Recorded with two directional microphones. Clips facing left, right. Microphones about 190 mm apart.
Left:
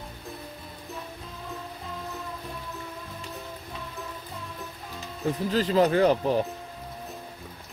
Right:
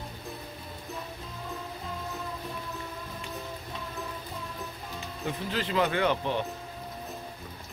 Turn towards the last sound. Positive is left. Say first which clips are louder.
# left 6 dB
turn(degrees=35)  # may be behind; listen again after turning